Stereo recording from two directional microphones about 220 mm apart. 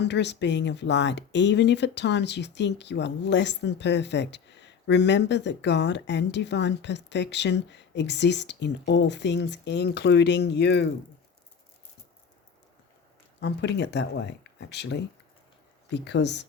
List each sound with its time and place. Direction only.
0.0 s speech: 50° left (ahead or behind)
13.4 s speech: 50° left (ahead or behind)